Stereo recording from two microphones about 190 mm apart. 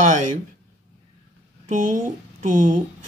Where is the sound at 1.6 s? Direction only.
40° right (ahead or behind).